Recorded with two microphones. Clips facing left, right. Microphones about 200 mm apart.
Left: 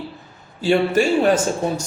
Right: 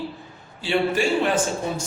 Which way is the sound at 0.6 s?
40° left (ahead or behind).